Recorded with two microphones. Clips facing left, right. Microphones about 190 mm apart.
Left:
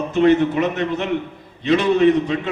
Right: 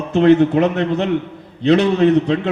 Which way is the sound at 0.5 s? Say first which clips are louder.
Right 4 dB; 60° right (ahead or behind).